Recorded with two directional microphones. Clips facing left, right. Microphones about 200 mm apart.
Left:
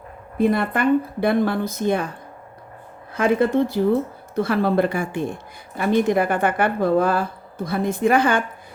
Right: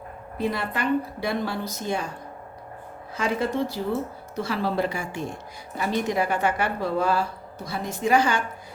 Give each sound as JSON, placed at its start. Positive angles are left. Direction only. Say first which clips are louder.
{"t": 0.3, "sound": "speech", "louder": "left 8 dB", "side_deg": 50}
{"t": 3.2, "sound": "speech", "louder": "left 7 dB", "side_deg": 55}